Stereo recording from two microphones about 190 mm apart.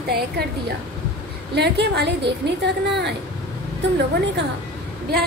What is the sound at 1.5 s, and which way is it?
Speech, 60° right (ahead or behind).